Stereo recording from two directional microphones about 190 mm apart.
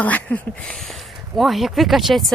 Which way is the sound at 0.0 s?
10° left (ahead or behind).